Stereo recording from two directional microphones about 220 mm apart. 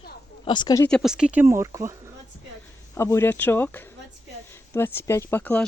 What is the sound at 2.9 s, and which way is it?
Speech, 10° left (ahead or behind).